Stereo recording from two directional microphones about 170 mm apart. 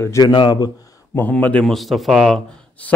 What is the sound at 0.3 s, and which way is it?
Speech, 25° left (ahead or behind).